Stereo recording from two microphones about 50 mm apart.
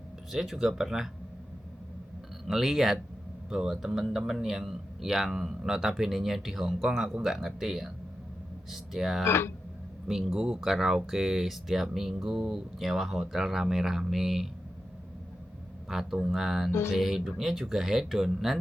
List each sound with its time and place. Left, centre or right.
0.3 s speech: centre
2.5 s speech: centre
9.2 s speech: left
10.1 s speech: centre
15.9 s speech: centre